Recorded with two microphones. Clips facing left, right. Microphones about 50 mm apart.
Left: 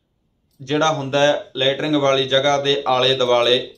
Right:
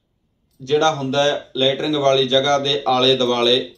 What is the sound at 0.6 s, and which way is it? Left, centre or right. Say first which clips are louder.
Speech: right 2 dB; left.